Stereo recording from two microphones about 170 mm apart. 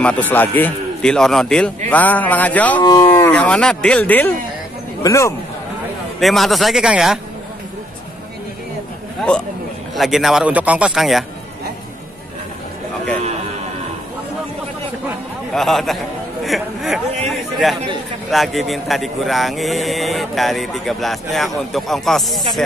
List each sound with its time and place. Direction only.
0.0 s a man's voice: 10° left (ahead or behind)
2.8 s speech: 25° left (ahead or behind)
3.2 s a man's voice: 10° left (ahead or behind)
6.1 s speech: centre (ahead or behind)
9.9 s speech: centre (ahead or behind)
15.5 s speech: centre (ahead or behind)
16.4 s a sound: centre (ahead or behind)
18.3 s speech: centre (ahead or behind)